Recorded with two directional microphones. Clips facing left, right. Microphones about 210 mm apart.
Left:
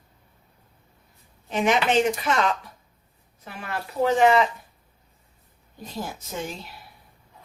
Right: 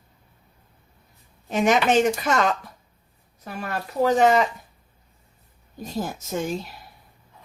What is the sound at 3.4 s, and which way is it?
Speech, 40° right (ahead or behind).